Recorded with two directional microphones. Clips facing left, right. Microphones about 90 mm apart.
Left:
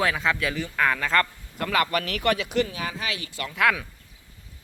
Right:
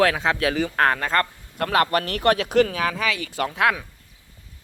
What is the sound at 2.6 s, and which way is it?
Speech, 70° right (ahead or behind).